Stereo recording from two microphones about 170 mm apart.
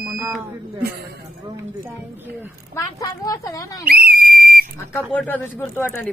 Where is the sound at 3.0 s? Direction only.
20° left (ahead or behind).